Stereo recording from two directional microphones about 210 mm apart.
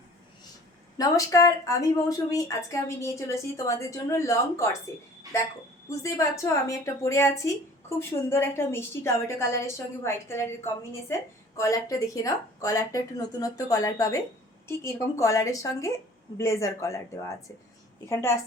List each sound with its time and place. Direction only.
0.9 s a woman's voice: 15° left (ahead or behind)
18.1 s a woman's voice: 10° left (ahead or behind)